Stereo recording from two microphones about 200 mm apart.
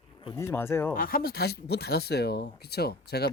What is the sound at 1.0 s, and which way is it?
Speech, 45° left (ahead or behind).